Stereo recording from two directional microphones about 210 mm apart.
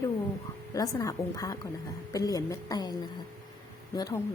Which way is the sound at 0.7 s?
15° left (ahead or behind).